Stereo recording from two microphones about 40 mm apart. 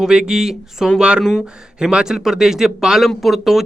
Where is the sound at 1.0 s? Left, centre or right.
Right.